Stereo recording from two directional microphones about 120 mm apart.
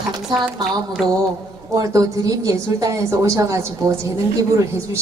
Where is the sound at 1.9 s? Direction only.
30° right (ahead or behind).